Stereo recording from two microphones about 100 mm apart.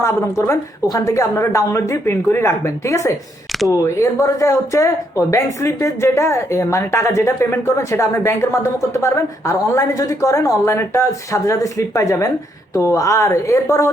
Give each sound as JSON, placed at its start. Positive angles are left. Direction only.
{"t": 0.0, "sound": "a woman's voice", "side_deg": 30}